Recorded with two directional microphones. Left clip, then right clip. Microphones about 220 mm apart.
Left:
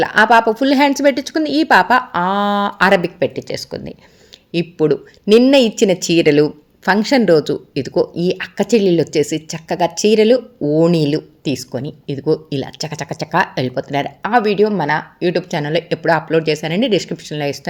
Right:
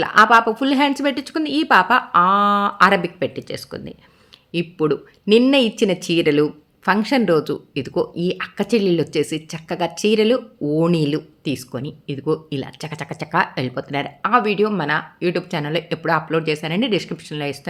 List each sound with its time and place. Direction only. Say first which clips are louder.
0.0 s speech: left 2 dB; 5° left (ahead or behind)